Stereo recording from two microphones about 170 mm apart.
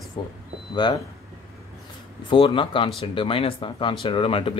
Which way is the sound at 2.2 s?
30° left (ahead or behind).